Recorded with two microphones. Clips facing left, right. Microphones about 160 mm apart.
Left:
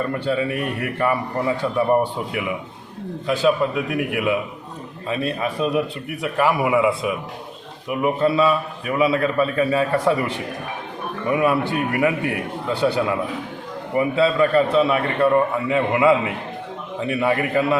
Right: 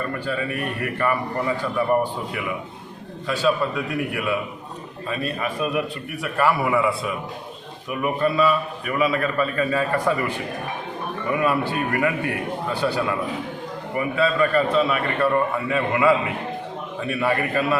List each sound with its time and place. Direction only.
0.3 s a man's voice: 20° left (ahead or behind)